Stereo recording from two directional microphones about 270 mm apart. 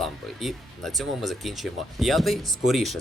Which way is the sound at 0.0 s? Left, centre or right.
Centre.